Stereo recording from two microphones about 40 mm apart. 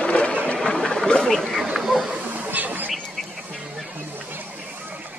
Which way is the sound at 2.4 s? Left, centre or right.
Right.